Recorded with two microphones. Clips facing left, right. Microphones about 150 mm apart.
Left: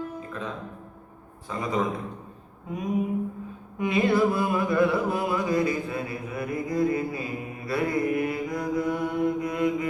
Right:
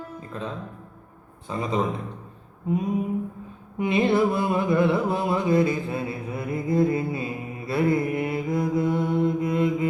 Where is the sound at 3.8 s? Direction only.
25° right (ahead or behind).